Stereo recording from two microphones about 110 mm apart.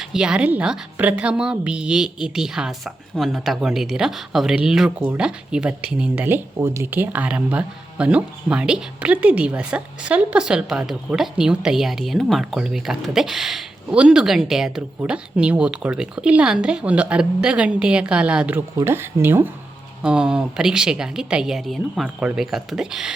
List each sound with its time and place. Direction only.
0.0 s a woman's voice: 5° right (ahead or behind)
18.8 s speech: 20° right (ahead or behind)
20.0 s speech: 10° right (ahead or behind)